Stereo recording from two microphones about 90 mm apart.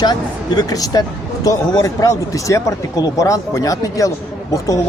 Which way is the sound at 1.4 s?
40° left (ahead or behind).